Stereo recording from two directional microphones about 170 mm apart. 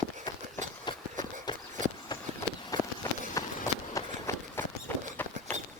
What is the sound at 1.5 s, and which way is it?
Horse, 25° left (ahead or behind).